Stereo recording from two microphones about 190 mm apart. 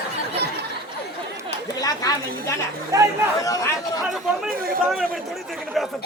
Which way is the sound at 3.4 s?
20° left (ahead or behind).